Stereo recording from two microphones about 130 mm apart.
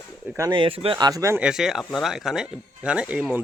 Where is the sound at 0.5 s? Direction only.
45° right (ahead or behind).